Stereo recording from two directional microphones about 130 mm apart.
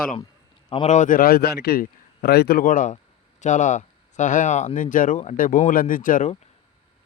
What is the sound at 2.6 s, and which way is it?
Speech, 85° left.